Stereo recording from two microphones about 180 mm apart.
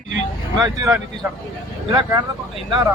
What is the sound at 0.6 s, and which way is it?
Speech, 20° right (ahead or behind).